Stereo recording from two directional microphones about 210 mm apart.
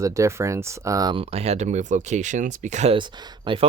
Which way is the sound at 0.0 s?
15° right (ahead or behind).